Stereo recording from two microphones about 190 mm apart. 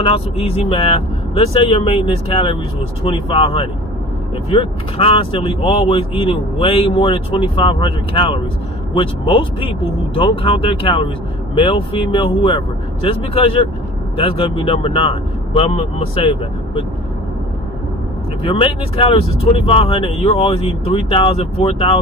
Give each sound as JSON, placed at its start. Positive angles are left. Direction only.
{"t": 0.0, "sound": "speech", "side_deg": 30}
{"t": 18.4, "sound": "speech", "side_deg": 30}